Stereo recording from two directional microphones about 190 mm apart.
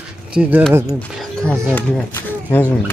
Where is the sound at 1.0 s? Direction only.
5° left (ahead or behind).